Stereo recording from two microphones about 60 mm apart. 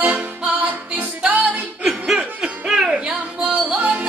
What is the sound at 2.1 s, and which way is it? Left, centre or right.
Music, centre.